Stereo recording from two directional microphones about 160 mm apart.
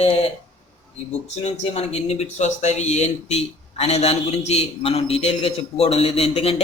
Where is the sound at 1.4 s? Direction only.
40° left (ahead or behind).